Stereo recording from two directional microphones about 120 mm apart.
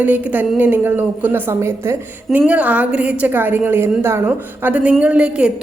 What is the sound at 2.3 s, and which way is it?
A woman's voice, 10° right (ahead or behind).